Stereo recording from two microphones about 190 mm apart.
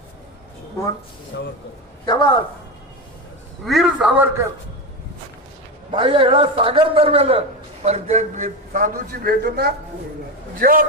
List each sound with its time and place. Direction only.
1.3 s a man's voice: 65° left (ahead or behind)
2.0 s a woman's voice: 25° left (ahead or behind)
3.7 s a man's voice: centre (ahead or behind)
5.9 s a man's voice: 30° right (ahead or behind); by 10.8 s 50° right (ahead or behind)